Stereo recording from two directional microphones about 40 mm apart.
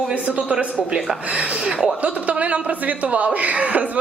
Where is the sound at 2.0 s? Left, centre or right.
Right.